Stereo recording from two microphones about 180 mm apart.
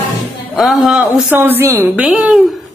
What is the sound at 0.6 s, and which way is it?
A woman's voice, centre (ahead or behind).